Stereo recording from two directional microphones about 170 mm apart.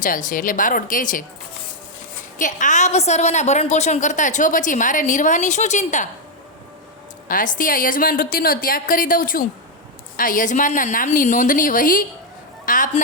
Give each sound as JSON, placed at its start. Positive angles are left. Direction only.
{"t": 0.0, "sound": "a woman's voice", "side_deg": 50}
{"t": 2.4, "sound": "a woman's voice", "side_deg": 45}
{"t": 7.3, "sound": "a woman's voice", "side_deg": 50}
{"t": 12.6, "sound": "music", "side_deg": 50}